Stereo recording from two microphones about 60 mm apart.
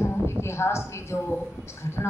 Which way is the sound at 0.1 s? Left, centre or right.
Left.